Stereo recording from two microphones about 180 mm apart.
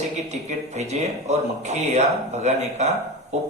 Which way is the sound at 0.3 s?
40° right (ahead or behind).